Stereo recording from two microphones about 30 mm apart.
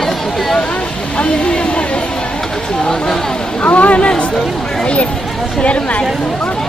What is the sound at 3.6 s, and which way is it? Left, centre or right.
Speech, left.